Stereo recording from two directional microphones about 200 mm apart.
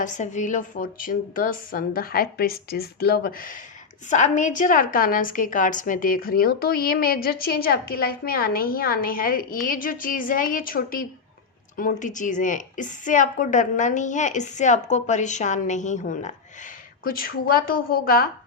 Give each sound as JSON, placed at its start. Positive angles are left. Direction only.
{"t": 0.0, "sound": "a woman's voice", "side_deg": 40}